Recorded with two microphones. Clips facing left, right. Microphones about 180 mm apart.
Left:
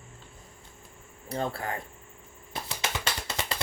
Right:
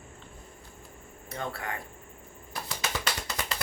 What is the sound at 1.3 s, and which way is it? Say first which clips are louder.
Speech: left 4 dB; 30° left (ahead or behind).